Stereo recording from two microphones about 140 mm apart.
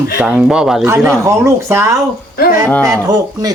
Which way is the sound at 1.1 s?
20° right (ahead or behind).